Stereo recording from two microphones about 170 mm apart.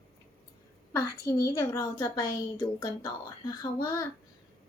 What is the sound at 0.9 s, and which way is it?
A woman's voice, 20° left (ahead or behind).